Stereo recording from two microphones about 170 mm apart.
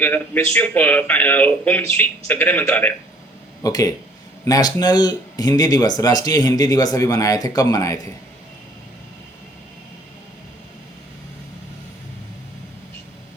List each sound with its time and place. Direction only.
0.0 s speech: 10° left (ahead or behind)
3.6 s speech: 20° left (ahead or behind)